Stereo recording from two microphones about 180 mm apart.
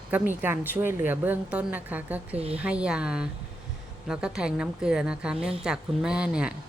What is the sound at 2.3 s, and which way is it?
Speech, 35° right (ahead or behind).